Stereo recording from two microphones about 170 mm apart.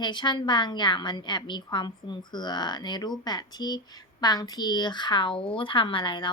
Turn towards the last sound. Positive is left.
turn(degrees=30)  # may be behind; listen again after turning